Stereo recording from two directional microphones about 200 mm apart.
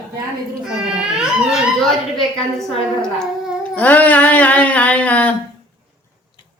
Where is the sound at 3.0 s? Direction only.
5° left (ahead or behind).